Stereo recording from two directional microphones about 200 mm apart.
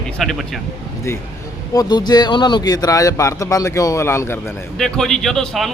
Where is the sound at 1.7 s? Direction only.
20° left (ahead or behind).